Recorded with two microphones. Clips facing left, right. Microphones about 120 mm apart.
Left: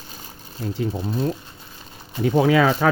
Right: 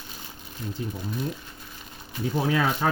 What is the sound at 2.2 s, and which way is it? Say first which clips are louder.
Speech: left 8 dB; 90° left.